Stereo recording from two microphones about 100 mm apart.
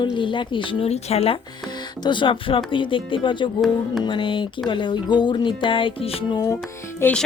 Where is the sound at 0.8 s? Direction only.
90° left.